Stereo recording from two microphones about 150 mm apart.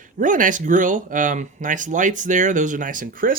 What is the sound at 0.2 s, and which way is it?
Speech, 60° right (ahead or behind).